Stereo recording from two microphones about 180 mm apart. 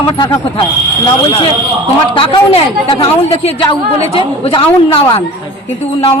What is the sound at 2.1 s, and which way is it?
A woman's voice, 30° left (ahead or behind).